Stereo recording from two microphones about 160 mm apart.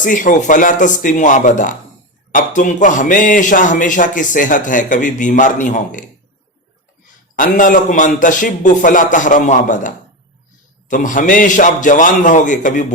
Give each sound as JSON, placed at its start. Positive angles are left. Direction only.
{"t": 0.0, "sound": "speech", "side_deg": 55}
{"t": 7.3, "sound": "speech", "side_deg": 55}